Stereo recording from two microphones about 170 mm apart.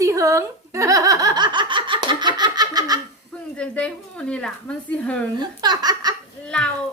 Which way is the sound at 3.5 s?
5° left (ahead or behind).